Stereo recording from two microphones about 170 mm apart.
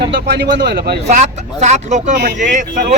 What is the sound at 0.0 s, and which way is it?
Speech, 80° right.